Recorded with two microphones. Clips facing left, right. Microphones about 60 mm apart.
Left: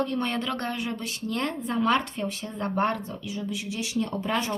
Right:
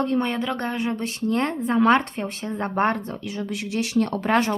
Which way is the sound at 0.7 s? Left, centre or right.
Right.